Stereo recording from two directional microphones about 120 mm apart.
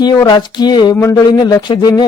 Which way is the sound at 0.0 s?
40° left (ahead or behind).